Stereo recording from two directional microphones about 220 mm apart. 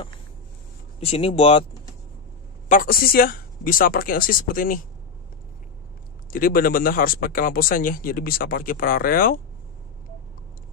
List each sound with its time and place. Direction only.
0.9 s speech: 25° left (ahead or behind)
2.7 s speech: 40° left (ahead or behind)
6.3 s speech: 40° left (ahead or behind)